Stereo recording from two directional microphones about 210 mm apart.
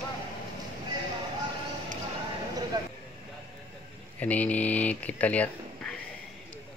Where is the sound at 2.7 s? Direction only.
20° right (ahead or behind).